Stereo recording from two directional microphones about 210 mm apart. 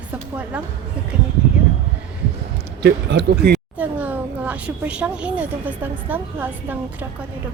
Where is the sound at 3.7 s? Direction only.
10° right (ahead or behind).